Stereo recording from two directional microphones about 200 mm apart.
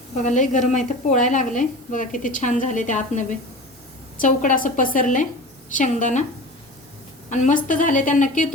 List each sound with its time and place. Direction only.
0.2 s a woman's voice: 40° left (ahead or behind)
7.3 s a woman's voice: 35° left (ahead or behind)